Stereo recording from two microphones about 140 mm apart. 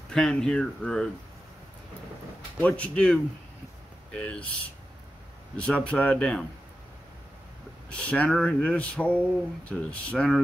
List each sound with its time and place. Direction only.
0.1 s speech: 5° left (ahead or behind)
2.6 s speech: 10° left (ahead or behind)
5.6 s speech: 10° left (ahead or behind)
7.9 s speech: 10° left (ahead or behind)